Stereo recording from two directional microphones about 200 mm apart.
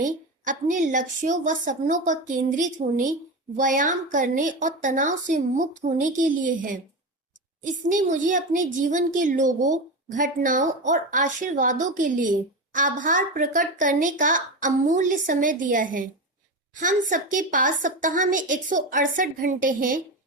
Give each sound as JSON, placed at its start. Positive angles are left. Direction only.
{"t": 0.0, "sound": "speech", "side_deg": -40}